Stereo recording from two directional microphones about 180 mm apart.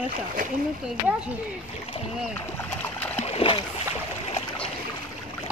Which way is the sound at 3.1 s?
35° left (ahead or behind).